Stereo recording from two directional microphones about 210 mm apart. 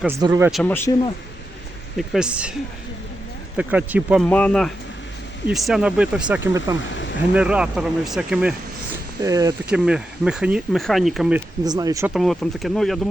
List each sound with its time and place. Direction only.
0.0 s speech: 10° right (ahead or behind)
0.5 s speech: 10° left (ahead or behind)
2.0 s speech: 5° right (ahead or behind)
3.6 s speech: 5° right (ahead or behind)
4.3 s speech: 5° left (ahead or behind)
9.2 s speech: 20° right (ahead or behind)
9.6 s speech: 5° right (ahead or behind)
11.6 s speech: 20° right (ahead or behind)
12.1 s speech: centre (ahead or behind)